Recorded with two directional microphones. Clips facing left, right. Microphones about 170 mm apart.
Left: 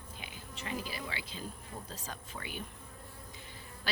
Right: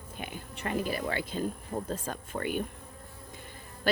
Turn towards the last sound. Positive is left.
turn(degrees=-50)  # may be behind; listen again after turning